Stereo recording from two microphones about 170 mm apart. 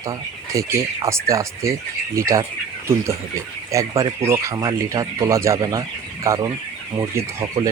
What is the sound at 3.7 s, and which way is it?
Speech, 20° right (ahead or behind).